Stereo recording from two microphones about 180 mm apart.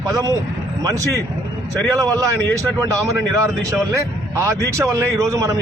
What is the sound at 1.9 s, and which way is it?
Speech, 20° right (ahead or behind).